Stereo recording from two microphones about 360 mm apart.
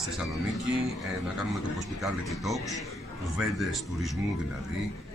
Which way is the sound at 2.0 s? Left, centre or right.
Centre.